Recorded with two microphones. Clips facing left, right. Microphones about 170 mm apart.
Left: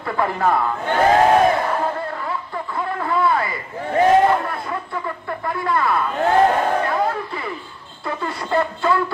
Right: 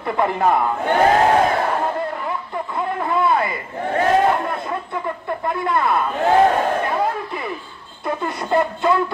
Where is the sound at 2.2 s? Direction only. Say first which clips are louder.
Right 1 dB; 20° right (ahead or behind).